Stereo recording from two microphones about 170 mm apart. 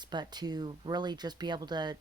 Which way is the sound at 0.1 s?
25° right (ahead or behind).